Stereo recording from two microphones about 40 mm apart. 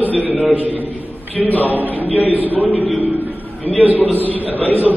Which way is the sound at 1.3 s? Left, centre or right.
Left.